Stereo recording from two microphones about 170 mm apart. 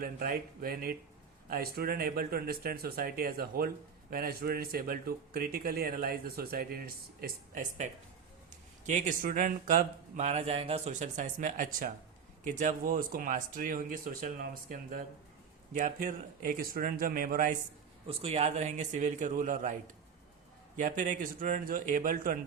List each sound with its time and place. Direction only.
0.0 s speech: 60° right (ahead or behind)
8.9 s speech: 50° right (ahead or behind)
18.1 s speech: 35° right (ahead or behind)
20.7 s speech: 50° right (ahead or behind)